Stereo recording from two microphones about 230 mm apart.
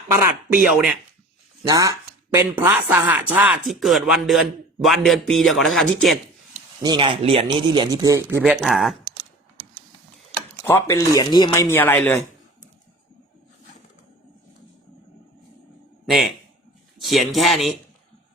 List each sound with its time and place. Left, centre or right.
0.7 s speech: centre
1.6 s a sound: centre
2.6 s speech: centre
6.8 s speech: right; by 9.0 s centre
10.7 s speech: centre
16.0 s a man's voice: centre